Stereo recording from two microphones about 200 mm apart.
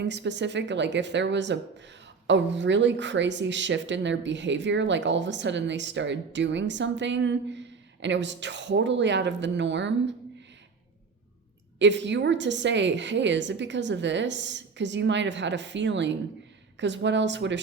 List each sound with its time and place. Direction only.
0.0 s speech: 60° right (ahead or behind)
11.8 s speech: 60° right (ahead or behind)